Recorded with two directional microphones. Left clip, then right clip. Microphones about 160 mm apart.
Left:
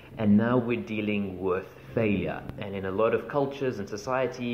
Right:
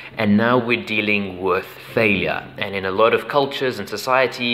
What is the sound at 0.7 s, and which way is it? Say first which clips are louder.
Speech: right 11 dB; 10° right (ahead or behind).